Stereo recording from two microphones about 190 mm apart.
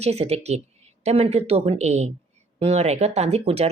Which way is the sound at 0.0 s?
35° right (ahead or behind).